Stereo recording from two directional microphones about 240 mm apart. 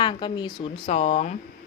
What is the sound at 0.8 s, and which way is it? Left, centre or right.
Speech, left.